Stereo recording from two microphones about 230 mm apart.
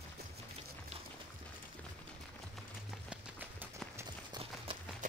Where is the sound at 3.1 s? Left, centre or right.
Centre.